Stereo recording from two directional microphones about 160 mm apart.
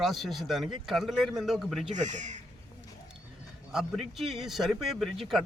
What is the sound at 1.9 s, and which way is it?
Speech, 50° right (ahead or behind).